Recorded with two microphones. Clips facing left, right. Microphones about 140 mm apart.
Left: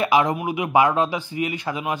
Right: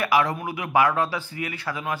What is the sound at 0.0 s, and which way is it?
Speech, 20° left (ahead or behind).